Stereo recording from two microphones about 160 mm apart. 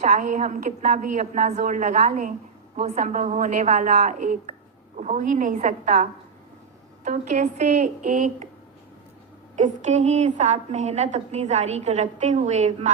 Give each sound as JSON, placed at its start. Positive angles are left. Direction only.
{"t": 0.0, "sound": "a woman's voice", "side_deg": -50}
{"t": 9.6, "sound": "a woman's voice", "side_deg": -50}